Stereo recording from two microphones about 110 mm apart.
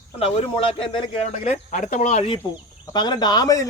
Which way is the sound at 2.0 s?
90° left.